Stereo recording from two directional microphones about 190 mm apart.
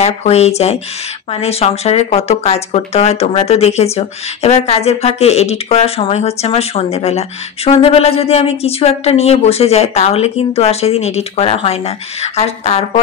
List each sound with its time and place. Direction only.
0.0 s speech: 35° left (ahead or behind)